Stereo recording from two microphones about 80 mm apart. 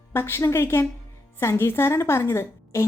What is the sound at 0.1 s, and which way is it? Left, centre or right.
A woman's voice, left.